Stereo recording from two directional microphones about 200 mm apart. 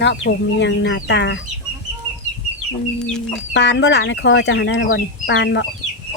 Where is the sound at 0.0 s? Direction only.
60° left (ahead or behind).